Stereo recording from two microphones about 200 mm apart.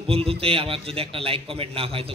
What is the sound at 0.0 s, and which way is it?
A man's voice, 30° right (ahead or behind).